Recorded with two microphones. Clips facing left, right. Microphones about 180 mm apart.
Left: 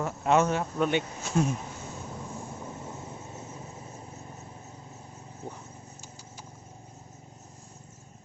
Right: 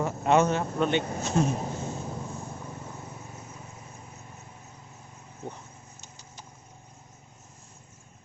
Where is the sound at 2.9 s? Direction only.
25° left (ahead or behind).